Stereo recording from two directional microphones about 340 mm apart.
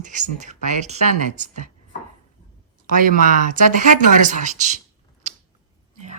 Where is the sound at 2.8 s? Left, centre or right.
Right.